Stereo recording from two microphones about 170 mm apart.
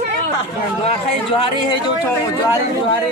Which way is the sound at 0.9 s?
30° left (ahead or behind).